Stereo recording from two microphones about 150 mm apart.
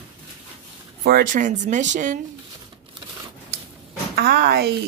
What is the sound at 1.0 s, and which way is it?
Speech, 80° right.